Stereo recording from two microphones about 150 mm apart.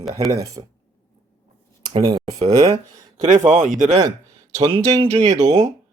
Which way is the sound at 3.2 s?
55° right (ahead or behind).